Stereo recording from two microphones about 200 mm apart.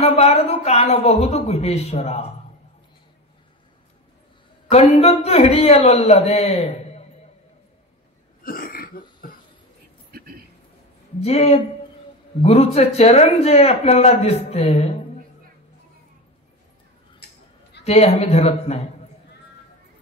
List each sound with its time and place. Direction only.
0.0 s a man's voice: 30° left (ahead or behind)
4.6 s a man's voice: 30° left (ahead or behind)
8.4 s throat clearing: 45° left (ahead or behind)
11.1 s a man's voice: 30° left (ahead or behind)
17.8 s a man's voice: 30° left (ahead or behind)